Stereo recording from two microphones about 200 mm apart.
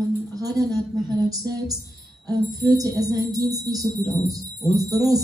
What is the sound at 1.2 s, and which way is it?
Speech, 20° right (ahead or behind).